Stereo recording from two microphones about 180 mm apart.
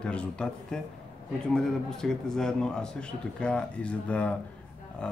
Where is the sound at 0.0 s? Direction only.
5° left (ahead or behind).